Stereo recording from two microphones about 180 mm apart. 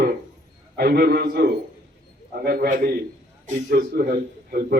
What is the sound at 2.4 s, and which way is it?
A man's voice, 55° right (ahead or behind).